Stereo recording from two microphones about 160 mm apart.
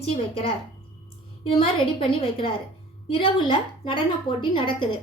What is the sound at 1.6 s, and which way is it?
A woman's voice, 35° left (ahead or behind).